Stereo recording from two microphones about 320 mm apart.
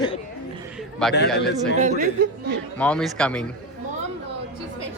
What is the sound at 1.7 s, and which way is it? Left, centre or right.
Speech, right.